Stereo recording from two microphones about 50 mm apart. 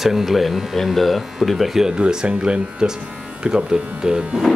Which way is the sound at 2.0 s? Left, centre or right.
Centre.